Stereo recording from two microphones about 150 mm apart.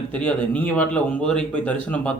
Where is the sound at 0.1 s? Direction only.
10° left (ahead or behind).